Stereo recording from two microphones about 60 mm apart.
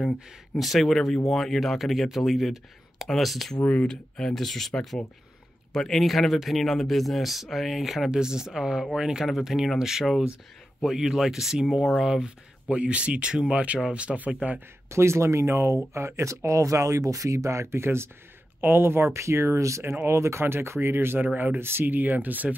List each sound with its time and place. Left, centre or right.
0.6 s speech: centre; by 14.6 s right
14.9 s speech: right